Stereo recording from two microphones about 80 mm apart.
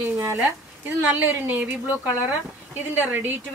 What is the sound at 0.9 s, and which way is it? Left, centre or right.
Speech, right.